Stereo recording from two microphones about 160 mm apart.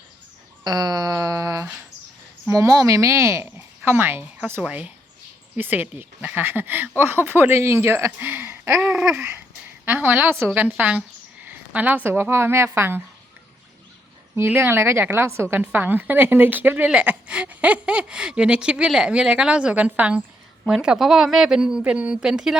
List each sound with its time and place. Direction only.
0.6 s a sound: 25° right (ahead or behind)
2.5 s a woman's voice: 20° right (ahead or behind)
8.8 s a woman's voice: 5° right (ahead or behind)
14.3 s a woman's voice: 10° right (ahead or behind)